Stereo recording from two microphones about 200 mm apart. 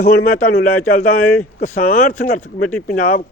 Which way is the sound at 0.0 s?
50° left (ahead or behind).